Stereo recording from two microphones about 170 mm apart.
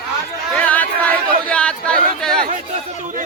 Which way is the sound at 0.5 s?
10° left (ahead or behind).